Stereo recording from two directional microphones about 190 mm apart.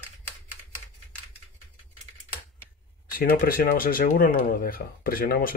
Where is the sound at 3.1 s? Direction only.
50° left (ahead or behind).